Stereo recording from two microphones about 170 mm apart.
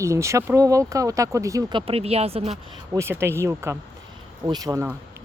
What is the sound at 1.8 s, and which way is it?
Speech, 35° right (ahead or behind).